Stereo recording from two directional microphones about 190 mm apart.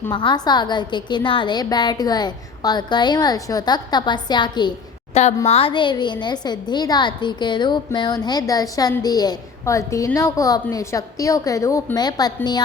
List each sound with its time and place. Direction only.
0.1 s a woman's voice: 25° left (ahead or behind)
5.2 s a woman's voice: 35° left (ahead or behind)